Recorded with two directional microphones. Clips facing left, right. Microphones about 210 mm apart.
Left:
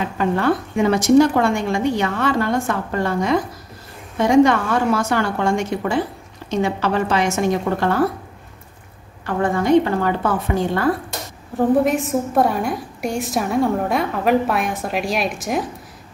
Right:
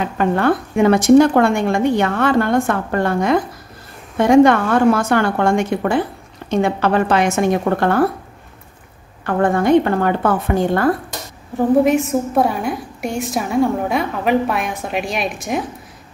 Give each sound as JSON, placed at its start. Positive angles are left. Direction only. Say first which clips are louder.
{"t": 0.2, "sound": "speech", "louder": "right 2 dB", "side_deg": -55}
{"t": 9.2, "sound": "speech", "louder": "right 4 dB", "side_deg": -55}
{"t": 11.5, "sound": "a woman's voice", "louder": "right 3 dB", "side_deg": 0}